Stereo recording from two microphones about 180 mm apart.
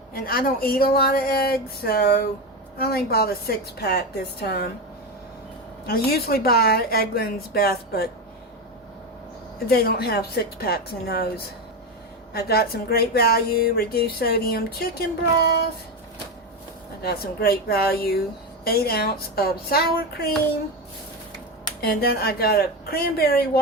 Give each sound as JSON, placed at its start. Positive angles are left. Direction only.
{"t": 0.1, "sound": "speech", "side_deg": 55}
{"t": 5.8, "sound": "speech", "side_deg": 55}
{"t": 9.6, "sound": "speech", "side_deg": 60}
{"t": 12.3, "sound": "speech", "side_deg": 60}
{"t": 17.0, "sound": "speech", "side_deg": 60}
{"t": 21.8, "sound": "speech", "side_deg": 60}